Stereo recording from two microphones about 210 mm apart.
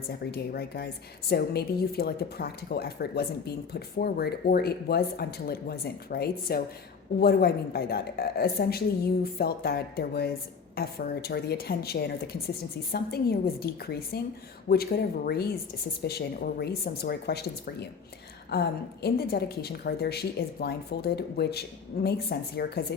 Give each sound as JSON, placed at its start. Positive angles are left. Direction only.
{"t": 0.1, "sound": "speech", "side_deg": 50}